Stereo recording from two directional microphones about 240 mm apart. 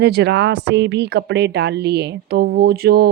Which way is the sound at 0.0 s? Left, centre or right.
Right.